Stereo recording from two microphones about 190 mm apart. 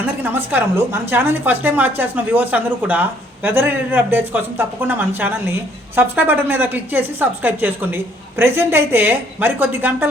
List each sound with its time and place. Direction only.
0.2 s a woman's voice: 10° right (ahead or behind)